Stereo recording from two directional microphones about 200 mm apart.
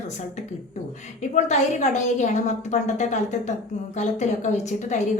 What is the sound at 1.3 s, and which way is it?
A woman's voice, 35° left (ahead or behind).